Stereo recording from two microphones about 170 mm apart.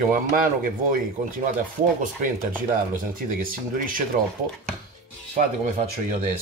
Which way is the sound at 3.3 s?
55° right (ahead or behind).